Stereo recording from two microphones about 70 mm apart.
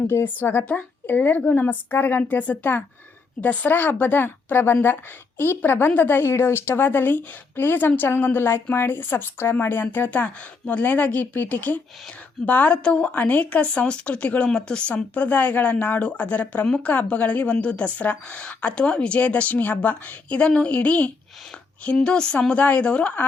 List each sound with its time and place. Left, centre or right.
0.1 s speech: left
0.6 s a woman's voice: centre